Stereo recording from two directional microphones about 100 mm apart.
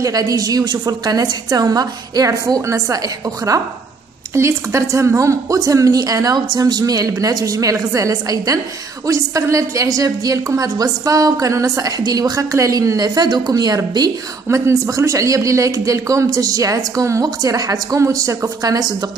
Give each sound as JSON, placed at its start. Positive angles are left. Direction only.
{"t": 0.0, "sound": "a woman's voice", "side_deg": -40}